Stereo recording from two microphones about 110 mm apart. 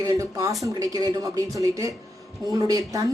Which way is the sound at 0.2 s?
30° right (ahead or behind).